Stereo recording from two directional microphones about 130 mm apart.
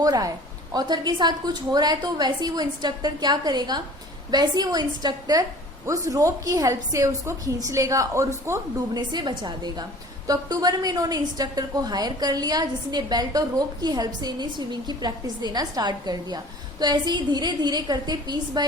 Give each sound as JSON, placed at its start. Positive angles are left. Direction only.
{"t": 0.0, "sound": "a woman's voice", "side_deg": -25}
{"t": 9.0, "sound": "a woman's voice", "side_deg": -35}